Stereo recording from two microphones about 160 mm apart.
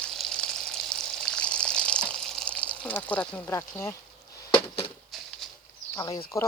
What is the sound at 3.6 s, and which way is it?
Speech, 15° left (ahead or behind).